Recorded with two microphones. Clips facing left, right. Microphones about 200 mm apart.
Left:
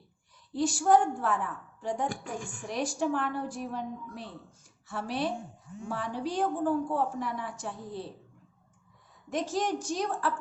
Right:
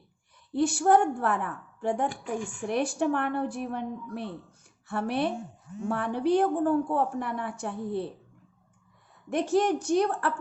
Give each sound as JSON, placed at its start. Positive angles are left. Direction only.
{"t": 0.5, "sound": "a woman's voice", "side_deg": -60}
{"t": 9.3, "sound": "a woman's voice", "side_deg": -60}